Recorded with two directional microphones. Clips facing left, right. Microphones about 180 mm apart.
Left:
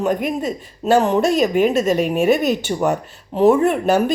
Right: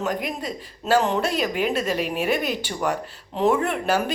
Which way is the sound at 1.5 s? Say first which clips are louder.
Left 8 dB; 50° left (ahead or behind).